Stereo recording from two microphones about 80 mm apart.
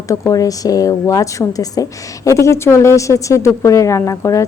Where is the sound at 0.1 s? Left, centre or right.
Left.